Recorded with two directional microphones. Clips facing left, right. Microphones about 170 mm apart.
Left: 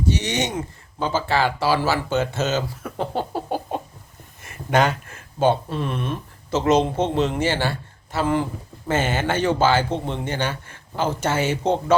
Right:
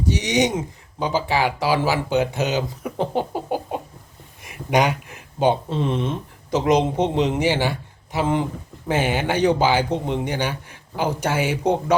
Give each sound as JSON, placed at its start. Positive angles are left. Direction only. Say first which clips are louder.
{"t": 0.1, "sound": "a man's voice", "louder": "right 5 dB", "side_deg": -15}